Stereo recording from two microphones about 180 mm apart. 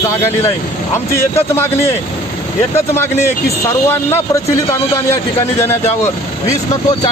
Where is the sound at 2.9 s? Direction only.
15° left (ahead or behind).